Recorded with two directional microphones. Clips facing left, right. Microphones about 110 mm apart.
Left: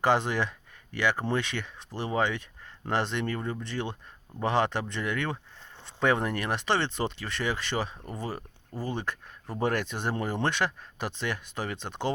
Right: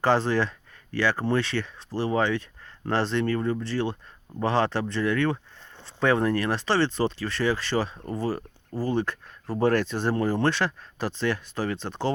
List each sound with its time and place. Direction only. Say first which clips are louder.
0.0 s speech: right 3 dB; 15° left (ahead or behind)